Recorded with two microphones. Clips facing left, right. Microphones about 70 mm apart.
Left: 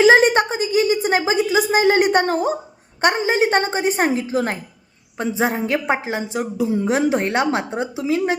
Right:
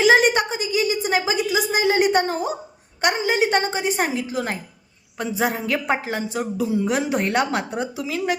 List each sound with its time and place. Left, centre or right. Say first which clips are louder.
0.0 s a woman's voice: left 3 dB; left